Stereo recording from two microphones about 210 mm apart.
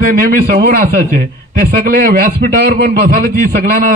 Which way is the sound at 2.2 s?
40° right (ahead or behind).